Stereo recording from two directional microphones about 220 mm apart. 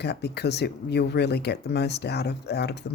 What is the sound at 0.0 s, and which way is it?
Speech, 50° left (ahead or behind).